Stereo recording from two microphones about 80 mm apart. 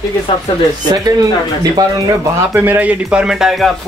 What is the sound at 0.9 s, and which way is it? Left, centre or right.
Speech, right.